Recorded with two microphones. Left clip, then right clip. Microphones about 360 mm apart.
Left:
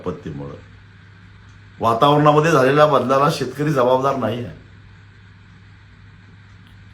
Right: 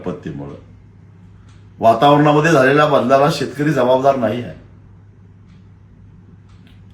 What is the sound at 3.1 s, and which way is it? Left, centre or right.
Speech, centre.